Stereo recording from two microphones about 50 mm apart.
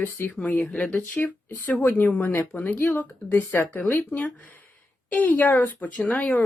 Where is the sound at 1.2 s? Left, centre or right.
Left.